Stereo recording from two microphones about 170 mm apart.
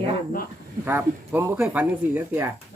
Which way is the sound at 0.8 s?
10° right (ahead or behind).